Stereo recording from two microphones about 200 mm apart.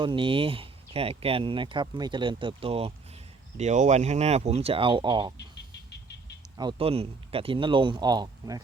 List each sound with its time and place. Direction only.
0.0 s speech: 25° right (ahead or behind)
6.6 s speech: 25° right (ahead or behind)